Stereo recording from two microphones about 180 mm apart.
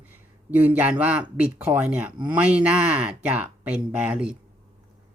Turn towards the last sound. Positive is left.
turn(degrees=-5)  # may be behind; listen again after turning